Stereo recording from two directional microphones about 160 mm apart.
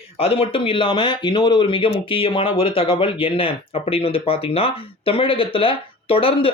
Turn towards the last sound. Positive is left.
turn(degrees=35)  # may be behind; listen again after turning